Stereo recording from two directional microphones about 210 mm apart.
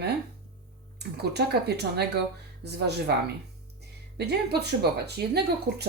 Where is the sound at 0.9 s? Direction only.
50° right (ahead or behind).